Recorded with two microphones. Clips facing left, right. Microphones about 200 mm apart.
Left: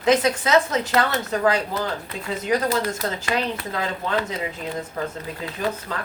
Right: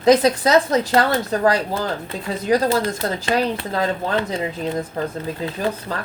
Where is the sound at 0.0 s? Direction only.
35° right (ahead or behind).